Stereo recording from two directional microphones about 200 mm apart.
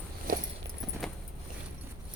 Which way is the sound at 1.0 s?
Centre (ahead or behind).